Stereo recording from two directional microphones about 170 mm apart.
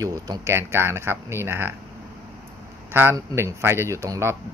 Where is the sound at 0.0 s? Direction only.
20° right (ahead or behind).